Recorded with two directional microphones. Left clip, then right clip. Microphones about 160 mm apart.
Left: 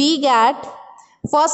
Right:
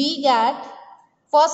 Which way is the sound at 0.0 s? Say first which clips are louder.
Left 4 dB; 50° left (ahead or behind).